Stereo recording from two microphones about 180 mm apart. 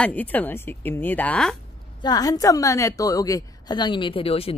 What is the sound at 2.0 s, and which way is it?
A woman's voice, 20° left (ahead or behind).